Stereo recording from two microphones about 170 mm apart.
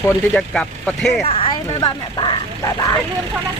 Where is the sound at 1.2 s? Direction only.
35° left (ahead or behind).